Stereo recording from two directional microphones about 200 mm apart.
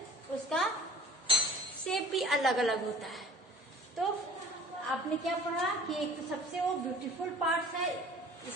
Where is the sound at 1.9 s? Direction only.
Centre (ahead or behind).